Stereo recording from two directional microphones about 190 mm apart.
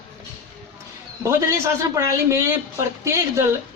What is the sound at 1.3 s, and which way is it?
A man's voice, 15° right (ahead or behind).